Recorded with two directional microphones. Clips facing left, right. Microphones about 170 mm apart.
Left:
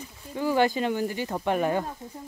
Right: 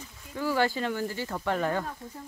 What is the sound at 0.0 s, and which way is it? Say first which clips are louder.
Speech: left 3 dB; 20° left (ahead or behind).